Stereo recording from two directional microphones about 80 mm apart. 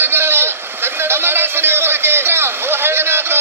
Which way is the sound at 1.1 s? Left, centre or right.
Right.